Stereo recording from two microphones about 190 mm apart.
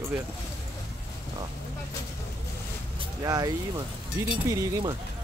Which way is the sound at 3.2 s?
20° right (ahead or behind).